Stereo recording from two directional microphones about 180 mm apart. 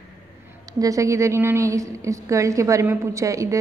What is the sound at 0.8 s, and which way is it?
A woman's voice, 20° right (ahead or behind).